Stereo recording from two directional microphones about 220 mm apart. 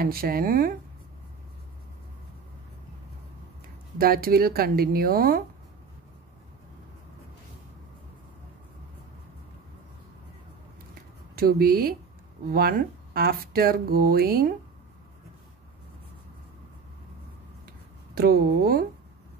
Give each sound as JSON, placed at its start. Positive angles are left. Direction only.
{"t": 0.0, "sound": "speech", "side_deg": -40}
{"t": 4.0, "sound": "speech", "side_deg": -40}
{"t": 11.3, "sound": "speech", "side_deg": -45}
{"t": 18.1, "sound": "speech", "side_deg": -45}